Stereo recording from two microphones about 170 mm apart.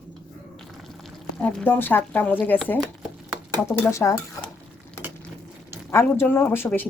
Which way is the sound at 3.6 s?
15° left (ahead or behind).